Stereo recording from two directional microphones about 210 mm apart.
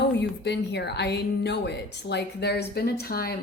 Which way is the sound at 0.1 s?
55° left (ahead or behind).